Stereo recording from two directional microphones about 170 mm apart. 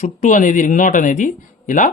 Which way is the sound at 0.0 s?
50° left (ahead or behind).